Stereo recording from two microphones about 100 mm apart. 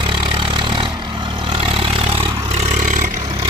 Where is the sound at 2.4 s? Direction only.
90° right.